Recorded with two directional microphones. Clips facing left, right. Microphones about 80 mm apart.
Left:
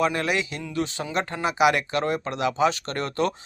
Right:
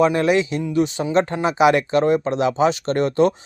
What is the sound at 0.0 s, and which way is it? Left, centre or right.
Speech, right.